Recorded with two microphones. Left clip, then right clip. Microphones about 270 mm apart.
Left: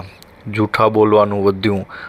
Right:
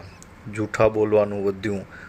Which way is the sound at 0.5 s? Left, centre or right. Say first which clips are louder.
Left 6 dB; centre.